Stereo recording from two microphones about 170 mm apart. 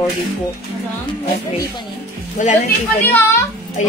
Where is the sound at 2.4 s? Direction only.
45° left (ahead or behind).